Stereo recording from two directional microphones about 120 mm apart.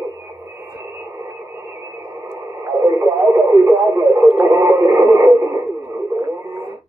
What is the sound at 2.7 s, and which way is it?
Radio, 30° right (ahead or behind).